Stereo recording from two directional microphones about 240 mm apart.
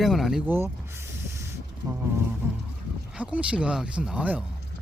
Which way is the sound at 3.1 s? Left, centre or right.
Centre.